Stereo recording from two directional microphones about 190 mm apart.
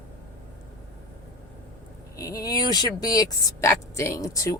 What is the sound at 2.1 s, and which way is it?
Speech, 20° left (ahead or behind).